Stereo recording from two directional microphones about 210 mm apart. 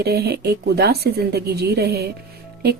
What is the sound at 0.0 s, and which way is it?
A woman's voice, 50° right (ahead or behind).